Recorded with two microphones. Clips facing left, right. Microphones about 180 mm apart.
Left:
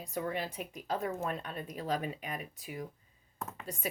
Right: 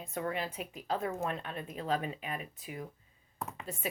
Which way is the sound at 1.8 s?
40° left (ahead or behind).